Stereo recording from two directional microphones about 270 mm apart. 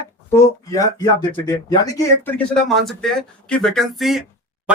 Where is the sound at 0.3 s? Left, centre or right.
Centre.